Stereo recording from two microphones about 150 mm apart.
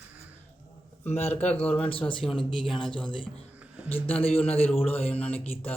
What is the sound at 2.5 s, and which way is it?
Speech, 35° left (ahead or behind).